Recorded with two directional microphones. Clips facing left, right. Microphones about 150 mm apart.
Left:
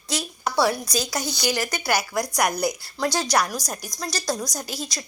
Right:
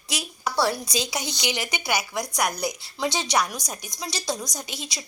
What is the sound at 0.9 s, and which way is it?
Speech, 25° right (ahead or behind).